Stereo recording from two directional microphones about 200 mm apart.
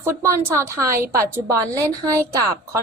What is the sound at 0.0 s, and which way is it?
A woman's voice, 10° right (ahead or behind).